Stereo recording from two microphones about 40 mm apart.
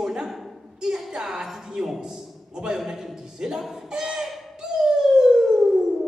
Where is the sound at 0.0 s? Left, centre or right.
Centre.